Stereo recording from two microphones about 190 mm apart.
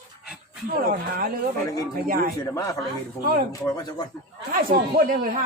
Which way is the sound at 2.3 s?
20° left (ahead or behind).